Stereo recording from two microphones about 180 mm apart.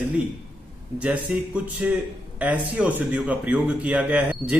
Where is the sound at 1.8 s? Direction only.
5° right (ahead or behind).